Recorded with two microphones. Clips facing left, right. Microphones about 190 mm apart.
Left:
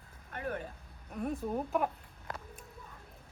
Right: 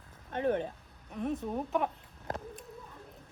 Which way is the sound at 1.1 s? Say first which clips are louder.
Right 1 dB; centre (ahead or behind).